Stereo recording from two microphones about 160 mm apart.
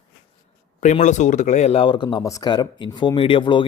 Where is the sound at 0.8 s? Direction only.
45° left (ahead or behind).